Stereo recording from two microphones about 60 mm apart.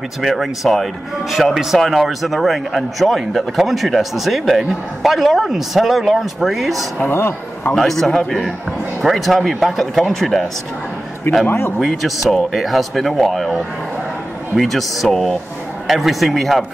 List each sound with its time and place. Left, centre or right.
0.2 s speech: centre
7.0 s speech: left
7.7 s speech: centre
11.4 s speech: left
11.8 s speech: centre
14.6 s speech: centre